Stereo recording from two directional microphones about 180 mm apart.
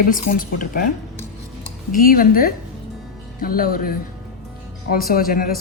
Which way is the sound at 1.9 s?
50° left (ahead or behind).